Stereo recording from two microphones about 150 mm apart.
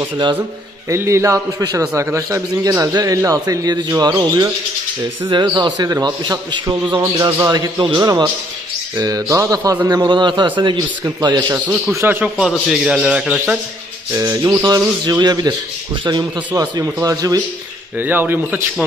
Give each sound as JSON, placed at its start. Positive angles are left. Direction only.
{"t": 0.8, "sound": "a man's voice", "side_deg": -20}
{"t": 11.6, "sound": "a man's voice", "side_deg": -10}
{"t": 14.1, "sound": "a man's voice", "side_deg": -25}
{"t": 17.9, "sound": "a man's voice", "side_deg": -15}